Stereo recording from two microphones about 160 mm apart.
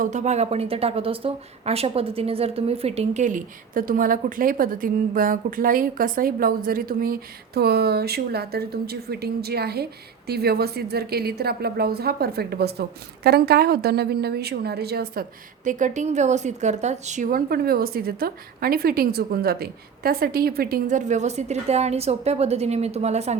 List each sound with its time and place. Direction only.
0.0 s a woman's voice: 50° right (ahead or behind)